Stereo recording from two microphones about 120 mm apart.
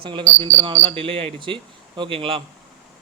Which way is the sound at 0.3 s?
60° right (ahead or behind).